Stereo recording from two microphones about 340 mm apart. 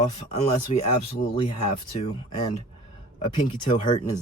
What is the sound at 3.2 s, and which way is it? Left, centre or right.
Speech, centre.